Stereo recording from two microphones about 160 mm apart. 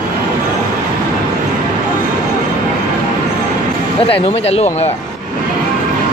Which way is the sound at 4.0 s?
40° left (ahead or behind).